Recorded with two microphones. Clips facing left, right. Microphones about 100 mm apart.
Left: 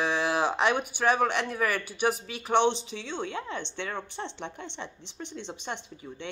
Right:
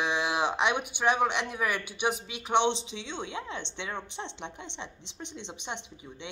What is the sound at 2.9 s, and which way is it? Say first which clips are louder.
A woman's voice: left 3 dB; 20° right (ahead or behind).